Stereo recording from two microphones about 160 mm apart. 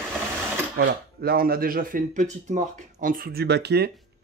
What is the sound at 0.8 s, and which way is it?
Speech, 75° right (ahead or behind).